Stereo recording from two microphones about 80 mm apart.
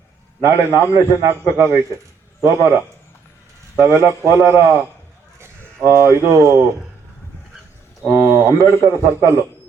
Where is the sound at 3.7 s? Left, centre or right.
Right.